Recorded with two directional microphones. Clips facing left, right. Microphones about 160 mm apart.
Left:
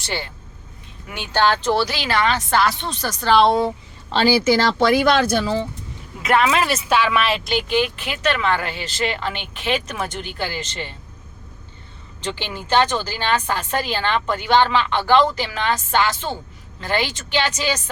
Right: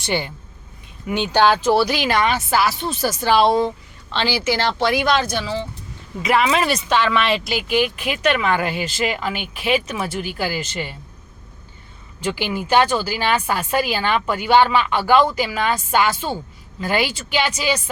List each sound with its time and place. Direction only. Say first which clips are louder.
0.0 s speech: right 5 dB; 15° right (ahead or behind)
4.1 s a woman's voice: left 4 dB; 40° left (ahead or behind)
4.8 s speech: left 3 dB; 50° left (ahead or behind)
6.2 s speech: even; centre (ahead or behind)
12.2 s speech: right 5 dB; 10° right (ahead or behind)